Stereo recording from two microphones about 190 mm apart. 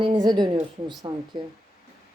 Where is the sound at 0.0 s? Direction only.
25° right (ahead or behind).